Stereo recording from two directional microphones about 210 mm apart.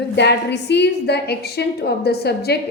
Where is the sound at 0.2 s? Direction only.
55° left (ahead or behind).